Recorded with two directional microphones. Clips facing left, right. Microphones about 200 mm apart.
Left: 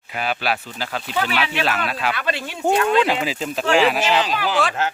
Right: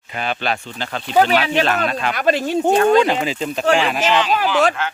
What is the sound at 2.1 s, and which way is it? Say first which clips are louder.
Speech: right 9 dB; 40° right (ahead or behind).